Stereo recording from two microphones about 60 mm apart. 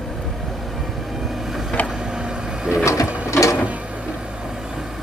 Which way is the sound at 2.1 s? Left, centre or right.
Centre.